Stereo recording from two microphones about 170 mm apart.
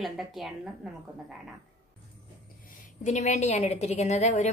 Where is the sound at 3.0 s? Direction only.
45° left (ahead or behind).